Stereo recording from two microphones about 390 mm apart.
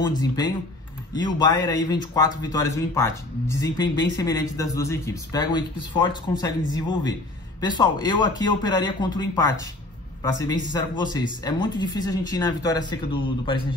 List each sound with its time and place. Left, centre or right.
0.0 s speech: centre